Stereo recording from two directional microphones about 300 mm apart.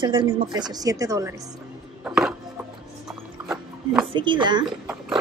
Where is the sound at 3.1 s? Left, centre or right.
Centre.